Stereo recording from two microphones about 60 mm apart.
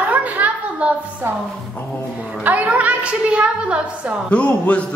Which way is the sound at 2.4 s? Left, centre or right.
Right.